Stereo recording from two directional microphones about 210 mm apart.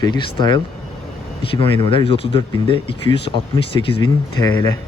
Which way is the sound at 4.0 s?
15° left (ahead or behind).